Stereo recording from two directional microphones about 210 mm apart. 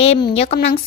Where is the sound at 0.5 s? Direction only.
45° left (ahead or behind).